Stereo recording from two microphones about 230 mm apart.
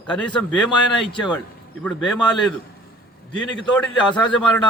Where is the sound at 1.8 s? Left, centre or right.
Centre.